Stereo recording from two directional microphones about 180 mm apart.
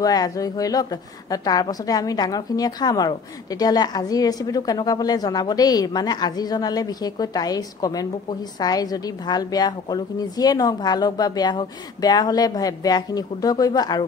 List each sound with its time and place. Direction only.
0.0 s a woman's voice: 20° left (ahead or behind)